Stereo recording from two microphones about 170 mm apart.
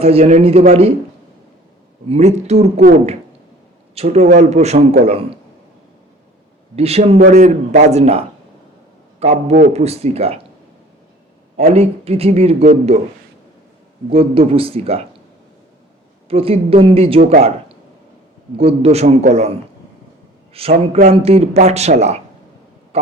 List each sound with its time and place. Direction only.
0.0 s a man's voice: 40° right (ahead or behind)
2.0 s a man's voice: 40° right (ahead or behind)
6.7 s a man's voice: 35° right (ahead or behind)
9.2 s a man's voice: 40° right (ahead or behind)
11.5 s a man's voice: 40° right (ahead or behind)
14.1 s a man's voice: 35° right (ahead or behind)
16.3 s a man's voice: 35° right (ahead or behind)
18.5 s a man's voice: 35° right (ahead or behind)